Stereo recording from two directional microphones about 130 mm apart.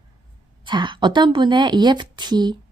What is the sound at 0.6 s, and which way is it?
A woman's voice, 35° right (ahead or behind).